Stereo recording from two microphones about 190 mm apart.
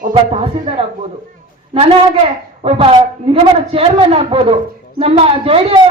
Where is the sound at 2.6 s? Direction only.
30° right (ahead or behind).